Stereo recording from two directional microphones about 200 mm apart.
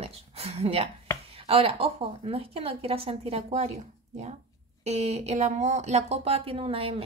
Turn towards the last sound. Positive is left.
turn(degrees=-30)  # may be behind; listen again after turning